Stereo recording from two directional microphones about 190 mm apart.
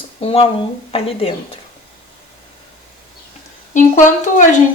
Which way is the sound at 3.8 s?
40° left (ahead or behind).